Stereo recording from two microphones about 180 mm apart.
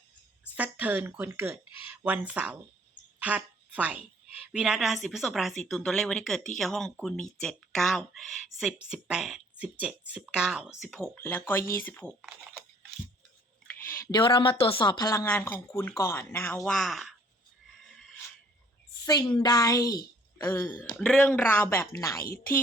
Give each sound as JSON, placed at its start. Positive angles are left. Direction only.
{"t": 0.5, "sound": "speech", "side_deg": -10}
{"t": 12.2, "sound": "speech", "side_deg": -5}
{"t": 13.7, "sound": "a sound", "side_deg": 10}
{"t": 14.1, "sound": "speech", "side_deg": 25}
{"t": 19.0, "sound": "a woman's voice", "side_deg": 20}